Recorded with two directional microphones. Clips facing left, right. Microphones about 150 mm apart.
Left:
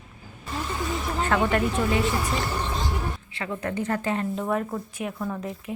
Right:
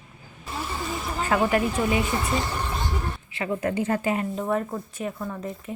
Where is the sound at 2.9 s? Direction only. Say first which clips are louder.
Left 1 dB; 5° left (ahead or behind).